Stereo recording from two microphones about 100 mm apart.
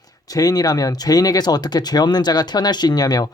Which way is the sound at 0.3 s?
40° left (ahead or behind).